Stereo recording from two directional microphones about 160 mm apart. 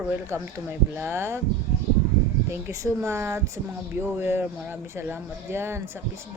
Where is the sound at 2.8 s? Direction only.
15° right (ahead or behind).